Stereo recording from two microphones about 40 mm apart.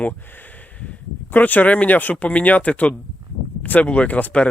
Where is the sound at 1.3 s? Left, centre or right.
Left.